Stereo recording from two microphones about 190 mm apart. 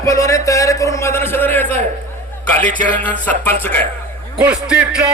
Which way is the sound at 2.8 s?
10° left (ahead or behind).